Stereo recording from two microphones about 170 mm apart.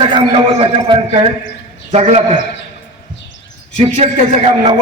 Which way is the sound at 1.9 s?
40° right (ahead or behind).